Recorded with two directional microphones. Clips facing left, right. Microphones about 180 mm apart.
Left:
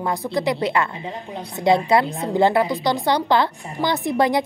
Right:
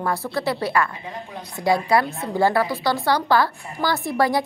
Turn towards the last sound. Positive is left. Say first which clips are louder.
# left 2 dB
turn(degrees=20)  # may be behind; listen again after turning